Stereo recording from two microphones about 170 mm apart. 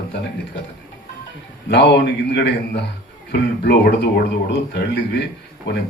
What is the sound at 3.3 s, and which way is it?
A man's voice, 70° left (ahead or behind).